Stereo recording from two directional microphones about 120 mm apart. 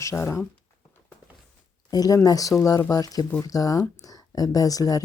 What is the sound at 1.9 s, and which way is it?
Speech, 30° left (ahead or behind).